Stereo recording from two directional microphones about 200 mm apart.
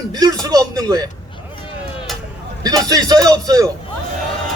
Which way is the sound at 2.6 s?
20° right (ahead or behind).